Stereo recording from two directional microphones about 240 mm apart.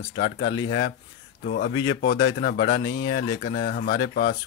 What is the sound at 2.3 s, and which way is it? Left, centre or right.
Speech, left.